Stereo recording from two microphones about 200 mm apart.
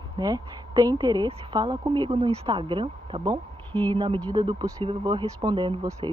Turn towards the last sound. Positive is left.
turn(degrees=-25)  # may be behind; listen again after turning